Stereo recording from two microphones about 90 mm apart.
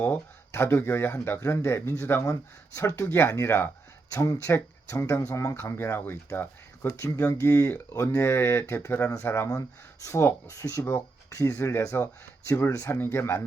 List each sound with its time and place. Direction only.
0.0 s speech: 25° left (ahead or behind)
4.1 s speech: 35° left (ahead or behind)
5.7 s speech: 20° left (ahead or behind)
7.9 s speech: 30° left (ahead or behind)